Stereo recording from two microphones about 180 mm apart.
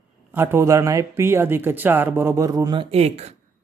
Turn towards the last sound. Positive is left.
turn(degrees=-35)  # may be behind; listen again after turning